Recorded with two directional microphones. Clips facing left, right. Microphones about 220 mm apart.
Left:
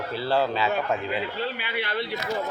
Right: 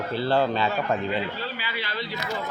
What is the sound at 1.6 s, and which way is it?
Speech, 60° left (ahead or behind).